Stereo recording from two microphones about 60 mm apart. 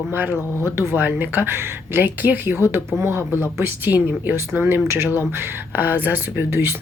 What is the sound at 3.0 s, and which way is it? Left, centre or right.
Speech, right.